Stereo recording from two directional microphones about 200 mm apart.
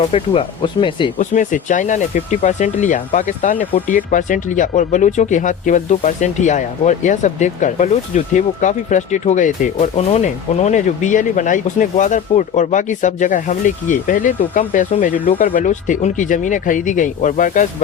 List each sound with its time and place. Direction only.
0.1 s speech: 25° left (ahead or behind)
1.2 s speech: 40° left (ahead or behind)